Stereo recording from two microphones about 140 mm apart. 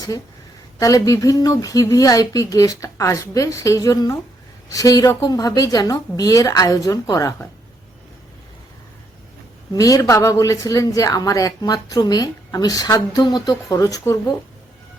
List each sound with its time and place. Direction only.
0.8 s a woman's voice: 25° left (ahead or behind)
9.7 s a woman's voice: 25° left (ahead or behind)